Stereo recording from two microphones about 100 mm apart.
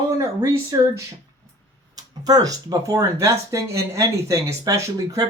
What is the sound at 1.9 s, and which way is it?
Speech, 40° right (ahead or behind).